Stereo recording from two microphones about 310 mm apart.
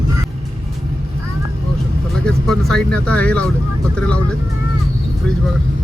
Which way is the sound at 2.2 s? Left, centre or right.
Centre.